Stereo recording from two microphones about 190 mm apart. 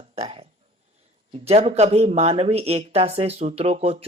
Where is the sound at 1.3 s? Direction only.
35° right (ahead or behind).